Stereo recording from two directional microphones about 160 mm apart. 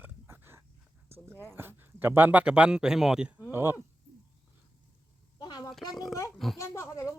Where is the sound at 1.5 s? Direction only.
15° right (ahead or behind).